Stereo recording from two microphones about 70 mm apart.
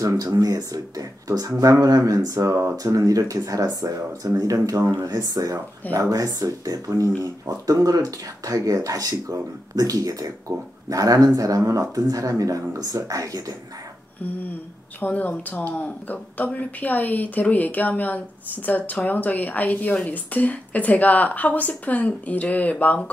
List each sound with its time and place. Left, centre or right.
0.0 s speech: right
15.0 s speech: left